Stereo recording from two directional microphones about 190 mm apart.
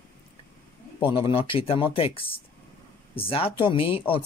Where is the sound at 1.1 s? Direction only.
30° left (ahead or behind).